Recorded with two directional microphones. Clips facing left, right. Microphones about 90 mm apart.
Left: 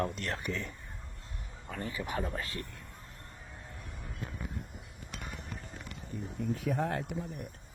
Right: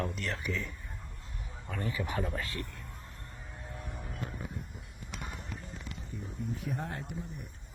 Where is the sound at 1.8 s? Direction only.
25° left (ahead or behind).